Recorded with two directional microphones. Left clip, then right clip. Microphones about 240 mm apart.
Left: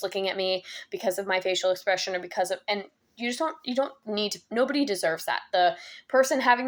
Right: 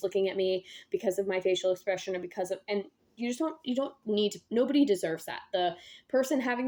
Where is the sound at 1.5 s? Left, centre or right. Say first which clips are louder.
Left 4 dB; centre.